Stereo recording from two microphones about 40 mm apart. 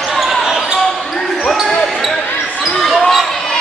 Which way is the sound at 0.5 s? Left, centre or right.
Centre.